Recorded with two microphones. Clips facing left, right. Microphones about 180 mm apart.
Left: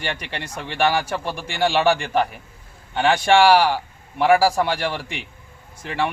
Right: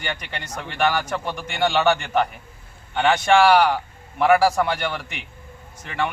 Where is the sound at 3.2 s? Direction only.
30° left (ahead or behind).